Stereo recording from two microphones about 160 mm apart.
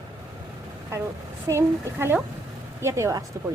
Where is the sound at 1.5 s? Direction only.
15° right (ahead or behind).